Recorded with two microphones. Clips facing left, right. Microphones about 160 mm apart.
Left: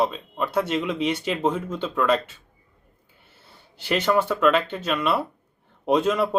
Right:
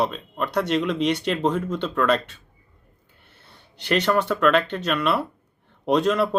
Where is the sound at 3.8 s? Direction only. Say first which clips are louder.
Even; 5° left (ahead or behind).